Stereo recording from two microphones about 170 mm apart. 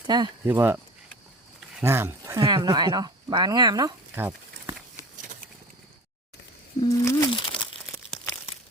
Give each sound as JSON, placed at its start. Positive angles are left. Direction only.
{"t": 0.1, "sound": "speech", "side_deg": -25}
{"t": 0.4, "sound": "speech", "side_deg": -10}
{"t": 1.8, "sound": "speech", "side_deg": -15}
{"t": 6.7, "sound": "a sound", "side_deg": 20}